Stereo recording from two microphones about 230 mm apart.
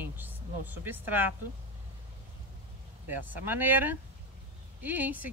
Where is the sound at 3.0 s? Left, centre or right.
Centre.